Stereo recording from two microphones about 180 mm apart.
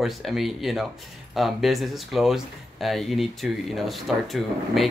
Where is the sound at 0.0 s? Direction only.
Centre (ahead or behind).